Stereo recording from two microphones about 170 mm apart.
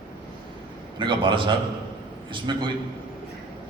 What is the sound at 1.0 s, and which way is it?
A man's voice, 30° right (ahead or behind).